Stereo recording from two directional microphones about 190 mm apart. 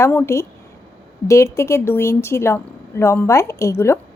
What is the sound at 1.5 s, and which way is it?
Speech, 15° left (ahead or behind).